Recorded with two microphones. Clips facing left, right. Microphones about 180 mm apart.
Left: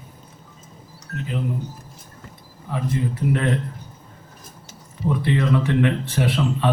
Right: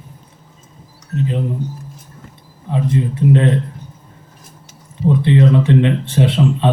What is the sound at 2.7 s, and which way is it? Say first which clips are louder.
Speech: right 6 dB; 25° right (ahead or behind).